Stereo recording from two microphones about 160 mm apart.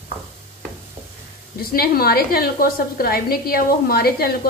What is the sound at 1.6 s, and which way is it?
A woman's voice, 70° left (ahead or behind).